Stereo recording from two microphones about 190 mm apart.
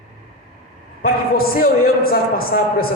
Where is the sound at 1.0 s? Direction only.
50° left (ahead or behind).